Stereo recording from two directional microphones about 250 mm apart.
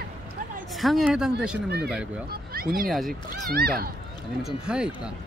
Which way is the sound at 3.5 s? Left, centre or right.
Right.